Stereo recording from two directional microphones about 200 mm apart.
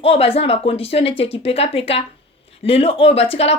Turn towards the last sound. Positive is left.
turn(degrees=30)  # may be behind; listen again after turning